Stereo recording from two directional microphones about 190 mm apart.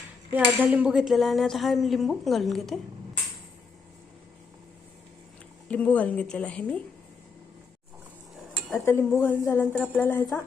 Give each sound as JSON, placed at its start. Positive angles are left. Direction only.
{"t": 0.3, "sound": "speech", "side_deg": -10}
{"t": 5.6, "sound": "a woman's voice", "side_deg": 5}
{"t": 8.8, "sound": "a woman's voice", "side_deg": 15}